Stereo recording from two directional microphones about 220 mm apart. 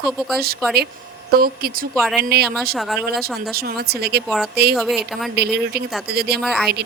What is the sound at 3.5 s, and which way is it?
Speech, 45° right (ahead or behind).